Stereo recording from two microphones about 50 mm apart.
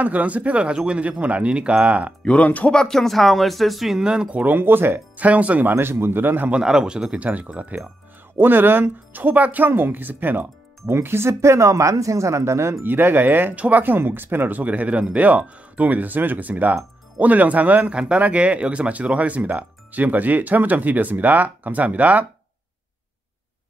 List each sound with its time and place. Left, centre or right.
0.0 s speech: right
2.2 s speech: left
2.7 s speech: centre
4.4 s a man's voice: right
5.1 s speech: right
5.7 s a man's voice: right
6.5 s a man's voice: centre
7.2 s speech: right
8.4 s speech: right
9.7 s speech: right
12.8 s a man's voice: right
13.9 s a man's voice: right
14.6 s speech: right